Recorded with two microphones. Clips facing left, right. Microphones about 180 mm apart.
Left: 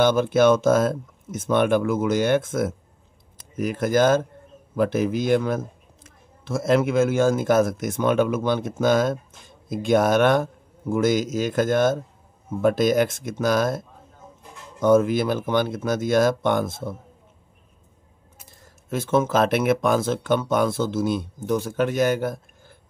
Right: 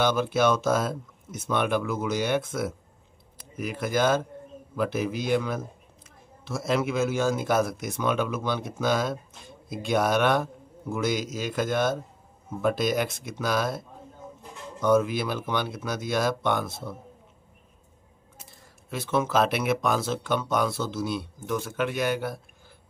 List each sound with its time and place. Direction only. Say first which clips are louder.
0.0 s speech: left 6 dB; 50° left (ahead or behind)
18.9 s speech: left 5 dB; 45° left (ahead or behind)
21.5 s speech: left 6 dB; 40° left (ahead or behind)